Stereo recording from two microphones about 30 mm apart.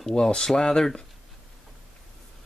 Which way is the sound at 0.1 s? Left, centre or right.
Left.